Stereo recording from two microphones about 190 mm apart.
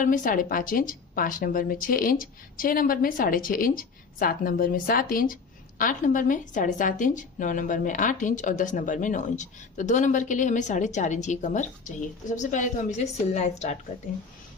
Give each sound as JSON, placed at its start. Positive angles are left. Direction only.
{"t": 0.0, "sound": "a woman's voice", "side_deg": 45}